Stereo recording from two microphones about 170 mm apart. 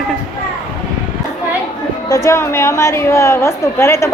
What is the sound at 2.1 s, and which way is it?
A woman's voice, 15° left (ahead or behind).